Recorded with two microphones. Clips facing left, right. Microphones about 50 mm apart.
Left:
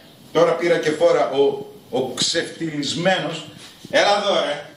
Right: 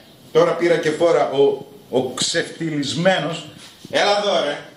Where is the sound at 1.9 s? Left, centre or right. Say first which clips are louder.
Right 2 dB; centre.